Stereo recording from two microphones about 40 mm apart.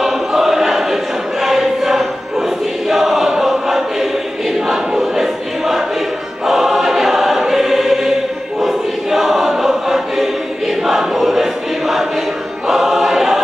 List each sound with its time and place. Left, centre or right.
0.0 s choir: centre